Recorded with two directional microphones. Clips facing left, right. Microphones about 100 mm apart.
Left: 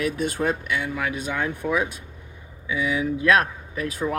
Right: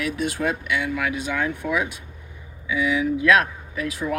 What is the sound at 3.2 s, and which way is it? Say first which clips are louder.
Speech: even; 40° left (ahead or behind).